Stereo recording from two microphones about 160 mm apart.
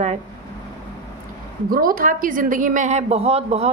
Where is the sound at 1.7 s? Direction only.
65° right (ahead or behind).